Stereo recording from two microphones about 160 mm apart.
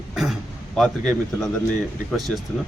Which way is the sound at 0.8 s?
Centre (ahead or behind).